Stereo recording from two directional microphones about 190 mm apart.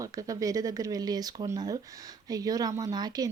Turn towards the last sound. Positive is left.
turn(degrees=-20)  # may be behind; listen again after turning